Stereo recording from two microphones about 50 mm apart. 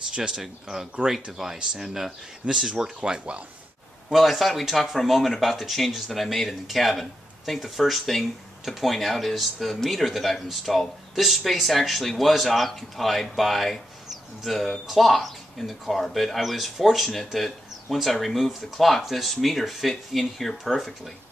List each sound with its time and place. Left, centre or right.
0.1 s speech: centre
4.1 s speech: centre